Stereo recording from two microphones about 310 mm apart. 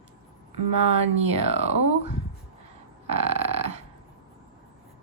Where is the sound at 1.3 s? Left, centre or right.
Centre.